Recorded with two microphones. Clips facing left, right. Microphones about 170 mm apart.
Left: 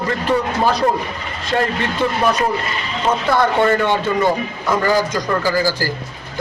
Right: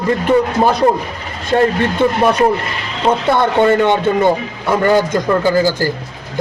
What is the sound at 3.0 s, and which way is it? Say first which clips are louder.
Speech: right 3 dB; 25° right (ahead or behind).